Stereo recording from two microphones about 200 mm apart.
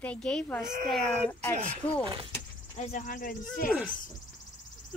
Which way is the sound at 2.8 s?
40° left (ahead or behind).